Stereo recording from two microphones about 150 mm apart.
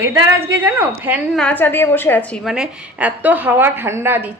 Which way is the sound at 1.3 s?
10° left (ahead or behind).